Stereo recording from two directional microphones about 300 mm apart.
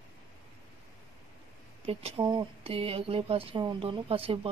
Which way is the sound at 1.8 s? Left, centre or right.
Centre.